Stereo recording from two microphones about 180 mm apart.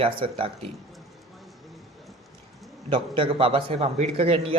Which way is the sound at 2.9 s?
30° right (ahead or behind).